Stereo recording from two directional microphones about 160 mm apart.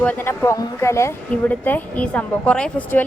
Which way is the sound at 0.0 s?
10° left (ahead or behind).